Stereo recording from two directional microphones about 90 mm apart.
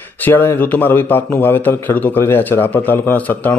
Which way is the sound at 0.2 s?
25° left (ahead or behind).